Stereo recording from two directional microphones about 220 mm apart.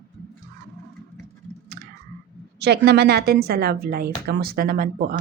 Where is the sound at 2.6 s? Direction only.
50° right (ahead or behind).